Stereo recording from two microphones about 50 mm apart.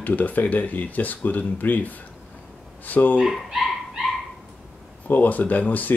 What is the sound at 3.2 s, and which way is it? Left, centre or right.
Speech, centre.